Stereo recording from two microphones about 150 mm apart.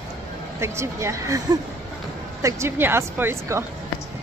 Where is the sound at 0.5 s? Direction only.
15° right (ahead or behind).